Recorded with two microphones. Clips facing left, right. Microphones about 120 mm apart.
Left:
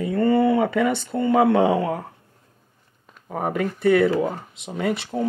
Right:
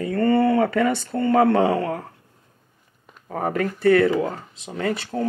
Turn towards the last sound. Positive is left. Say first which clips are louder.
# left 1 dB
turn(degrees=5)  # may be behind; listen again after turning